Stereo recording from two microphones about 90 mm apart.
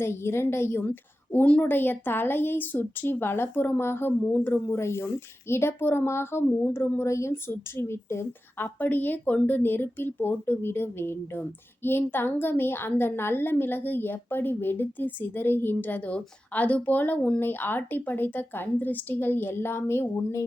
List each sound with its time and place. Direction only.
0.0 s a woman's voice: 30° left (ahead or behind)